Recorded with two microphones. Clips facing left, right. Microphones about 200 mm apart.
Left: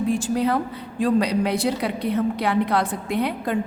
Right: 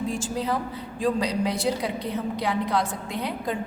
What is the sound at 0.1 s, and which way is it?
A woman's voice, 60° left (ahead or behind).